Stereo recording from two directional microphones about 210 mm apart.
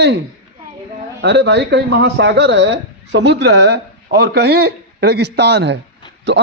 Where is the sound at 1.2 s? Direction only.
50° right (ahead or behind).